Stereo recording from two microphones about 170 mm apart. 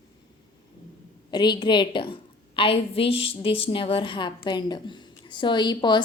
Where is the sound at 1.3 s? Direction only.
25° left (ahead or behind).